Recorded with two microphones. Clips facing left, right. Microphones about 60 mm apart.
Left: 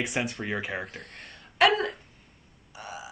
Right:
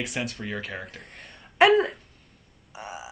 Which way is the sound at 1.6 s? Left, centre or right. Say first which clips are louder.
Right 4 dB; centre.